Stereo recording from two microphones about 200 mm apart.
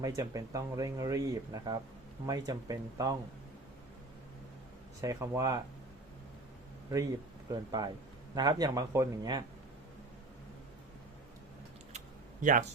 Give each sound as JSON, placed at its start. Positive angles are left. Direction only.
{"t": 0.0, "sound": "speech", "side_deg": -15}
{"t": 4.9, "sound": "speech", "side_deg": -15}
{"t": 7.5, "sound": "speech", "side_deg": -20}
{"t": 11.9, "sound": "typing", "side_deg": -40}